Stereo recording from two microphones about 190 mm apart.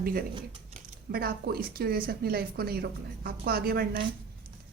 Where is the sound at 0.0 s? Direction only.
50° right (ahead or behind).